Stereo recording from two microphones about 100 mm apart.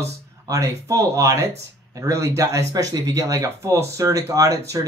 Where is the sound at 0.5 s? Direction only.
35° right (ahead or behind).